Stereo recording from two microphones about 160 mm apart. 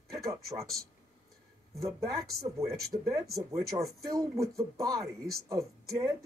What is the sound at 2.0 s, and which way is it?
Speech, 20° right (ahead or behind).